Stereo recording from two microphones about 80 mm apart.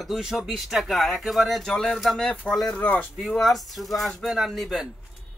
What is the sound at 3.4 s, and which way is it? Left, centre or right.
Speech, centre.